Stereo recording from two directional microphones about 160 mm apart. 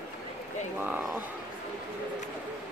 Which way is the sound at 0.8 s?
5° right (ahead or behind).